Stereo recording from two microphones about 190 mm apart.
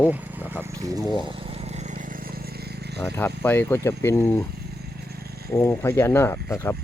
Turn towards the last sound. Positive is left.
turn(degrees=10)  # may be behind; listen again after turning